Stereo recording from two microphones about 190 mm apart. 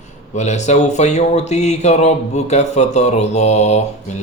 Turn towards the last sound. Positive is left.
turn(degrees=35)  # may be behind; listen again after turning